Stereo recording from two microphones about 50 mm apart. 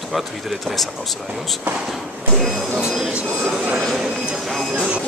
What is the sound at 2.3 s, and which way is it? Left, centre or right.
Speech, centre.